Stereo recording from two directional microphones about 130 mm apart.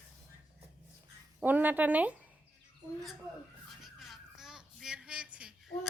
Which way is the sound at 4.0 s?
5° right (ahead or behind).